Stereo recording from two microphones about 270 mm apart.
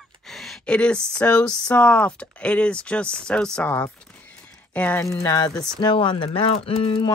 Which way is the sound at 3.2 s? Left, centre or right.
Centre.